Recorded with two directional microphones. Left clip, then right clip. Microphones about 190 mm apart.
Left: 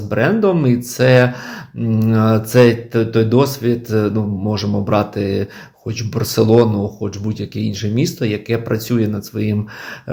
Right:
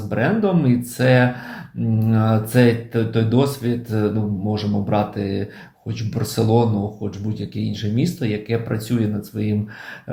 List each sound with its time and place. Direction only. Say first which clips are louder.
0.1 s speech: left 5 dB; 45° left (ahead or behind)